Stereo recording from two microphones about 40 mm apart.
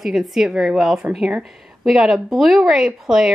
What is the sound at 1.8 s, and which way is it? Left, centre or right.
Speech, centre.